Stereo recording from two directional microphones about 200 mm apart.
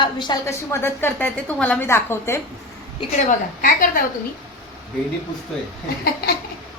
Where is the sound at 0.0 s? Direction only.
20° left (ahead or behind).